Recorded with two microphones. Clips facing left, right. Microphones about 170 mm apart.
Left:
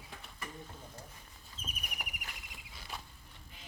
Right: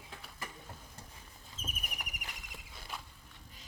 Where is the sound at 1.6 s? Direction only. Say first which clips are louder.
Right 2 dB; 45° right (ahead or behind).